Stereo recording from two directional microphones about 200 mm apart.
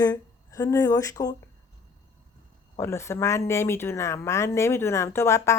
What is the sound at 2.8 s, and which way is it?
Speech, 15° left (ahead or behind).